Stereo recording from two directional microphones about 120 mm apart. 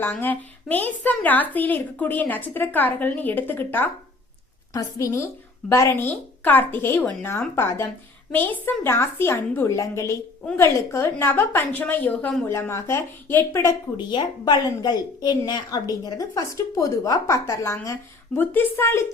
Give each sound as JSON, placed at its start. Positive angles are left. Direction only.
{"t": 0.0, "sound": "a woman's voice", "side_deg": 15}
{"t": 4.7, "sound": "a woman's voice", "side_deg": 25}
{"t": 13.9, "sound": "a woman's voice", "side_deg": 40}